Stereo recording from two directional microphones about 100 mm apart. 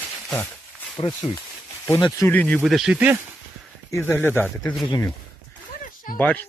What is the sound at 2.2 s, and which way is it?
Speech, 20° left (ahead or behind).